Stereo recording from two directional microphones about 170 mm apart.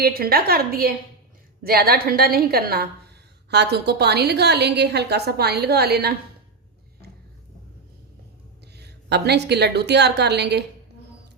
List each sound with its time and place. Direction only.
0.0 s a woman's voice: 60° right (ahead or behind)
3.5 s a woman's voice: 80° right
8.7 s a woman's voice: 75° right (ahead or behind)